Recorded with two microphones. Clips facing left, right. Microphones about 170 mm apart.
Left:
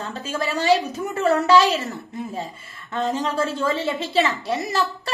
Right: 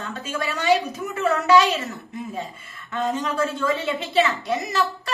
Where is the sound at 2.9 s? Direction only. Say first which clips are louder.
Left 1 dB; 30° left (ahead or behind).